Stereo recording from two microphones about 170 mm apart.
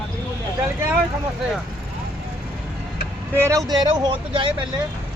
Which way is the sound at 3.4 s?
20° right (ahead or behind).